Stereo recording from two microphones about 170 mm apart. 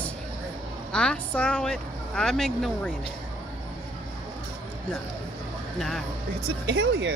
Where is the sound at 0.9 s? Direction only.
5° left (ahead or behind).